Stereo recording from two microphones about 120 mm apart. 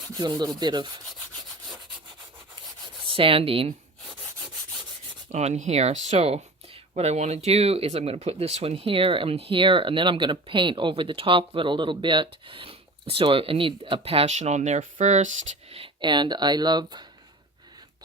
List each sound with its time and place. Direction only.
0.2 s rub: 35° right (ahead or behind)
2.6 s rub: 45° right (ahead or behind)
5.3 s speech: 75° right (ahead or behind)
15.7 s speech: 45° right (ahead or behind)